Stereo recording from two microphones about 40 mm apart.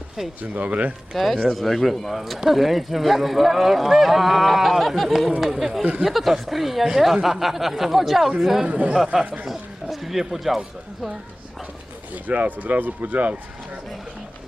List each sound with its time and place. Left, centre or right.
0.4 s speech: right
1.1 s speech: centre
5.8 s speech: right
6.1 s speech: centre
8.6 s speech: right
9.9 s speech: centre
12.1 s speech: right